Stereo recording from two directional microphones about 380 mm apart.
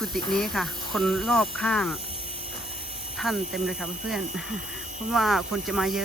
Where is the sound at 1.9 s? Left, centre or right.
Centre.